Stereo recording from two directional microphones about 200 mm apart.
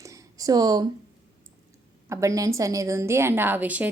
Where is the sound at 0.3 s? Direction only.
20° right (ahead or behind).